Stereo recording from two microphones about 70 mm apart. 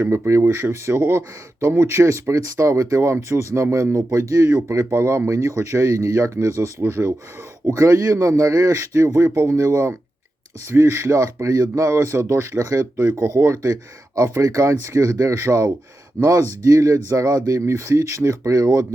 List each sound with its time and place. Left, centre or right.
0.0 s speech: right
7.7 s speech: right
9.6 s speech: right
10.7 s speech: right
12.5 s speech: right
13.0 s speech: right